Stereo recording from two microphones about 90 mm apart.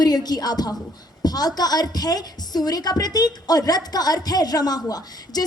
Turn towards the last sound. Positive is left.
turn(degrees=45)  # may be behind; listen again after turning